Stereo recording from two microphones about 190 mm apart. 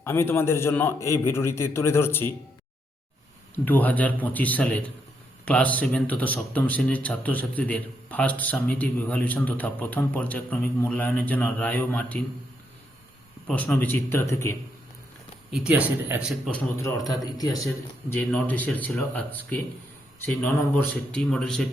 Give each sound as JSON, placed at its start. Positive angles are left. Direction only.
{"t": 0.0, "sound": "speech", "side_deg": 15}
{"t": 3.5, "sound": "speech", "side_deg": 10}
{"t": 13.5, "sound": "speech", "side_deg": 5}
{"t": 15.5, "sound": "speech", "side_deg": -5}
{"t": 16.8, "sound": "a man's voice", "side_deg": 20}
{"t": 18.1, "sound": "speech", "side_deg": 10}